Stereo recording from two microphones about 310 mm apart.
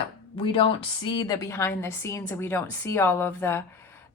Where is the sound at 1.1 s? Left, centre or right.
Centre.